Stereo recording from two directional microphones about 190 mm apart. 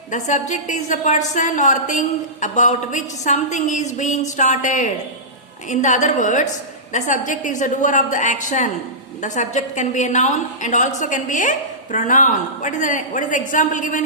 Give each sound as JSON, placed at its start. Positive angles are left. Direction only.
{"t": 0.1, "sound": "a woman's voice", "side_deg": 40}